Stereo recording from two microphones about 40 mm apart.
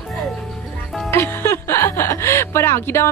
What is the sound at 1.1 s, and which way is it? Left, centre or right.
Music, left.